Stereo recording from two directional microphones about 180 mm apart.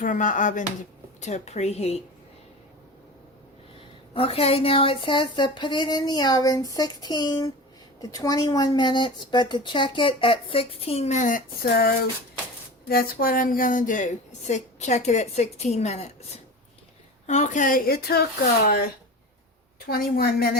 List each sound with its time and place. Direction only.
0.0 s a woman's voice: 45° left (ahead or behind)
4.1 s a woman's voice: 30° left (ahead or behind); by 11.9 s 55° left (ahead or behind)
12.9 s a woman's voice: 55° left (ahead or behind); by 16.1 s 35° left (ahead or behind)
17.2 s a woman's voice: 40° left (ahead or behind); by 18.3 s 60° left (ahead or behind)
19.9 s a woman's voice: 55° left (ahead or behind)